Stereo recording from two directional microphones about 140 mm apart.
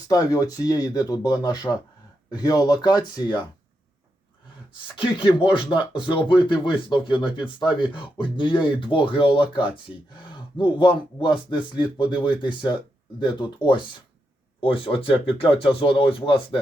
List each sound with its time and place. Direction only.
0.1 s speech: 25° left (ahead or behind)
4.9 s speech: 35° left (ahead or behind)